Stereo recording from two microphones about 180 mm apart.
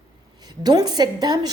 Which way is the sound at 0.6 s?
20° right (ahead or behind).